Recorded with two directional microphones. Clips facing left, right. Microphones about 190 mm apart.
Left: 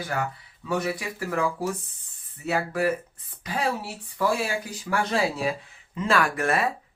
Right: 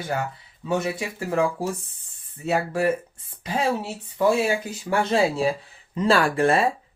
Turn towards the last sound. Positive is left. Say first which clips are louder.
# right 5 dB
turn(degrees=-30)  # may be behind; listen again after turning